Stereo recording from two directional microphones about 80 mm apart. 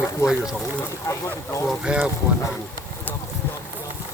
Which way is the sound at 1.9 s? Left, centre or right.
Centre.